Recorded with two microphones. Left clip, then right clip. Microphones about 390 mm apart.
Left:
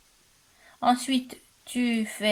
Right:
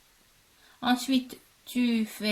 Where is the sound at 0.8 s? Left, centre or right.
Centre.